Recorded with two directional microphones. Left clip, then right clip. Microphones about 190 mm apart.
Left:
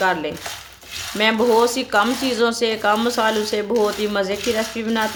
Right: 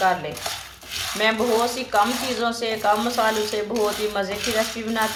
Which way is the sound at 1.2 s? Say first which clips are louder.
Left 5 dB; 60° left (ahead or behind).